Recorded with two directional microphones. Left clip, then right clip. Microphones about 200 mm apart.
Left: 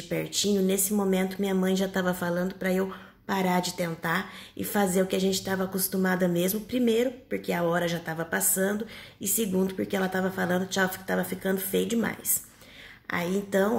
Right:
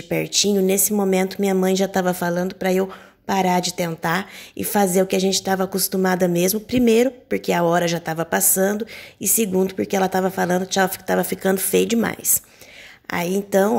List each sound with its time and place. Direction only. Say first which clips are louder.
0.1 s speech: right 8 dB; 40° right (ahead or behind)